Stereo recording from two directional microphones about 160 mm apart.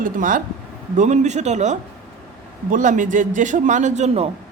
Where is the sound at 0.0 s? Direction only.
55° right (ahead or behind).